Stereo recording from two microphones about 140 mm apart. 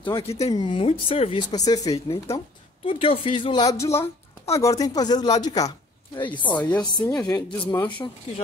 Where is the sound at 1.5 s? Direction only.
25° left (ahead or behind).